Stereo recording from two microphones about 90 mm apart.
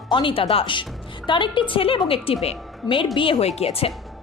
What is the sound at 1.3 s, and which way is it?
A woman's voice, 65° left (ahead or behind).